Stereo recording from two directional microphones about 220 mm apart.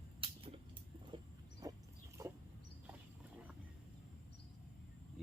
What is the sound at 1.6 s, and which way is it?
Dog, 15° right (ahead or behind).